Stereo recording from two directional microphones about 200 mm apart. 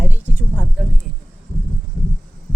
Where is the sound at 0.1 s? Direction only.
5° right (ahead or behind).